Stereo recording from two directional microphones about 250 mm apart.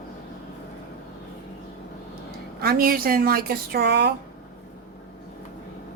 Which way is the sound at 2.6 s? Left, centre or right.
Right.